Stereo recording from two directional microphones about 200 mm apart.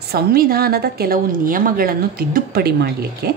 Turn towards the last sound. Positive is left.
turn(degrees=-50)  # may be behind; listen again after turning